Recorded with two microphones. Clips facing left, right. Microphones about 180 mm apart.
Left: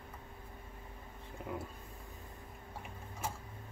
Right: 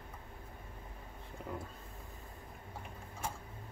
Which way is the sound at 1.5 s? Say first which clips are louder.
Left 1 dB; 10° left (ahead or behind).